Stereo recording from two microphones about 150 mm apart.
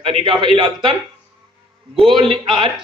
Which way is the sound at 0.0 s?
35° right (ahead or behind).